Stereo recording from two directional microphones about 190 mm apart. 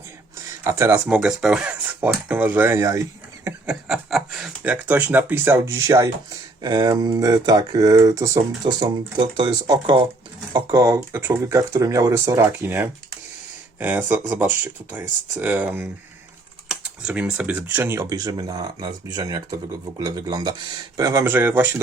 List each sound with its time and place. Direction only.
0.6 s speech: 15° right (ahead or behind)
1.0 s speech: 5° right (ahead or behind)
3.8 s speech: 5° right (ahead or behind)